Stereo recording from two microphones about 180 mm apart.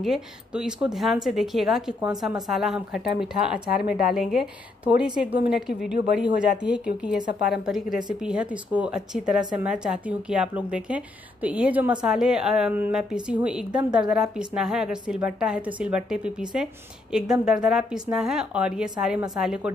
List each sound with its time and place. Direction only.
0.0 s speech: 5° right (ahead or behind)
3.7 s a woman's voice: 55° left (ahead or behind)
4.1 s speech: centre (ahead or behind)